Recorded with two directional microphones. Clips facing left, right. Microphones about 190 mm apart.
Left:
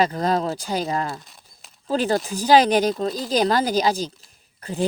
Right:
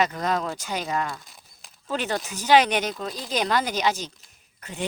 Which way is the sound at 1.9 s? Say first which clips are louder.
Left 6 dB; 35° left (ahead or behind).